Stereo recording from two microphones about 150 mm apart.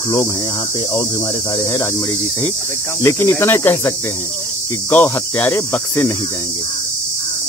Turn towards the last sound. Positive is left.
turn(degrees=15)  # may be behind; listen again after turning